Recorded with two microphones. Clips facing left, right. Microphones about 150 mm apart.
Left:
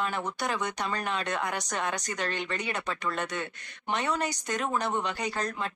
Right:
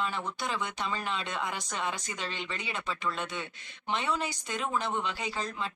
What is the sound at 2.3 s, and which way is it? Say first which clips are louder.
Speech: left 4 dB; 50° left (ahead or behind).